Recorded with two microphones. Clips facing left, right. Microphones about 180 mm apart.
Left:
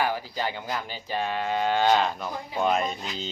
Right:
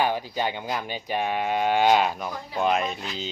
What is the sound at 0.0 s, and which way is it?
Speech, 20° right (ahead or behind).